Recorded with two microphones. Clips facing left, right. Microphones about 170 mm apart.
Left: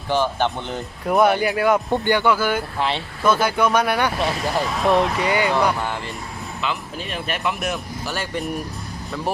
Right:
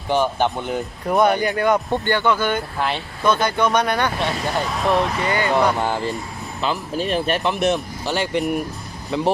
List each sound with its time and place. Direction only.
0.1 s speech: 15° right (ahead or behind)
1.0 s speech: 5° left (ahead or behind)
5.2 s speech: 10° left (ahead or behind)
5.8 s speech: 30° right (ahead or behind)